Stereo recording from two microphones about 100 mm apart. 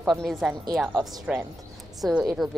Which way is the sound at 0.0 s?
Centre (ahead or behind).